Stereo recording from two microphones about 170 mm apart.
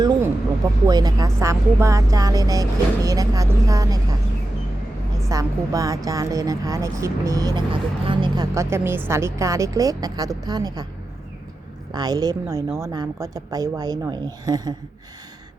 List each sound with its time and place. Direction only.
0.9 s speech: 25° right (ahead or behind)
5.3 s speech: 20° right (ahead or behind)
11.9 s speech: 25° right (ahead or behind)